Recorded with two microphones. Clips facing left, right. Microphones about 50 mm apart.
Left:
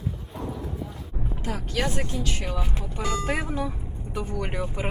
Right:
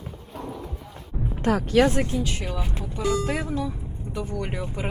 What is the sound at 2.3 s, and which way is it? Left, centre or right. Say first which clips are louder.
Speech: even; centre.